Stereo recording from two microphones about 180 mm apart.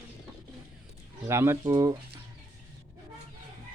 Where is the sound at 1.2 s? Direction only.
15° right (ahead or behind).